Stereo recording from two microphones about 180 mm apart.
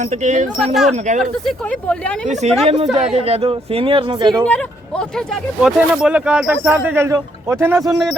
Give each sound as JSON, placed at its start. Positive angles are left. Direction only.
{"t": 0.0, "sound": "speech", "side_deg": -40}
{"t": 0.6, "sound": "speech", "side_deg": 0}
{"t": 2.2, "sound": "speech", "side_deg": -40}
{"t": 4.4, "sound": "speech", "side_deg": 5}